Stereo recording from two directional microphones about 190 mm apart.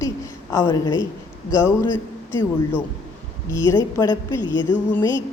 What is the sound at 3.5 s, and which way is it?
A woman's voice, 15° left (ahead or behind).